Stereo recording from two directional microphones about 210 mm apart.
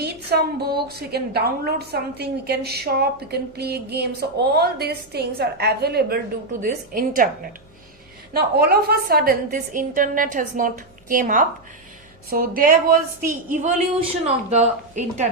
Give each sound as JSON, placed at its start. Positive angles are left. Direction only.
{"t": 0.0, "sound": "a woman's voice", "side_deg": -50}
{"t": 8.3, "sound": "a woman's voice", "side_deg": -50}